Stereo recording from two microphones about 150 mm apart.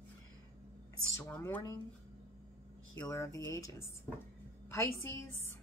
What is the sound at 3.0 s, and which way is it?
A woman's voice, 20° left (ahead or behind).